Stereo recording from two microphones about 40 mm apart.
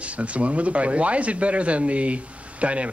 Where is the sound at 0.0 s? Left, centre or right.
Right.